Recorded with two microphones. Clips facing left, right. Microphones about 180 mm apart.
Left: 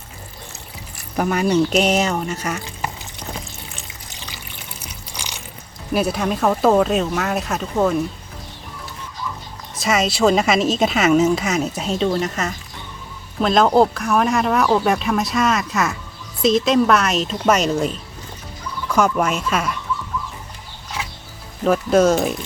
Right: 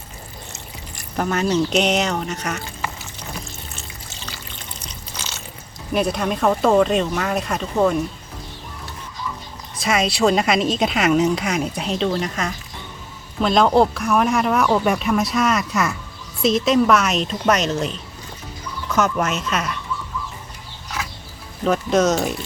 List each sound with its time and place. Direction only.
0.9 s speech: 5° left (ahead or behind)
3.8 s water: 15° left (ahead or behind)
5.9 s speech: 5° left (ahead or behind)
9.8 s speech: centre (ahead or behind)
18.9 s speech: 10° left (ahead or behind)
21.6 s speech: 5° left (ahead or behind)